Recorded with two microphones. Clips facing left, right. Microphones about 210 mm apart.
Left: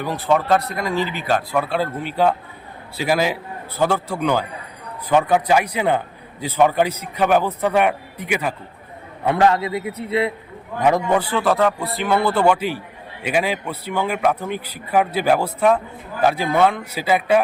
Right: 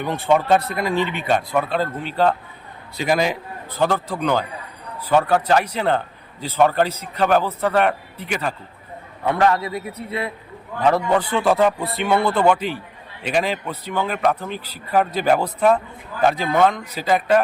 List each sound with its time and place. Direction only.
0.0 s a man's voice: centre (ahead or behind)
11.8 s a man's voice: centre (ahead or behind)